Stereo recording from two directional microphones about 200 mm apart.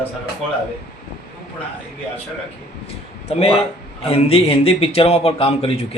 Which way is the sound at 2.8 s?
30° left (ahead or behind).